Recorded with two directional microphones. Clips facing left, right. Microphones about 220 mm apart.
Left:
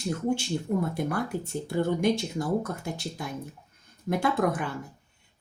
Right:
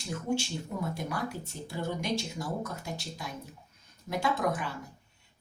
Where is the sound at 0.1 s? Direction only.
55° left (ahead or behind).